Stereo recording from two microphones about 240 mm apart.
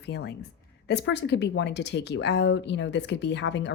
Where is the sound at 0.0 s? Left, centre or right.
Left.